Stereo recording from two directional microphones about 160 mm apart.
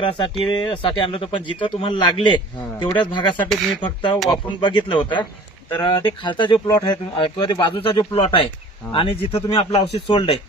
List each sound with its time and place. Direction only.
0.0 s speech: 30° left (ahead or behind)